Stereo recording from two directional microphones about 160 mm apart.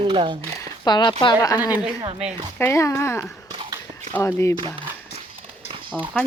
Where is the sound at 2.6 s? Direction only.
15° left (ahead or behind).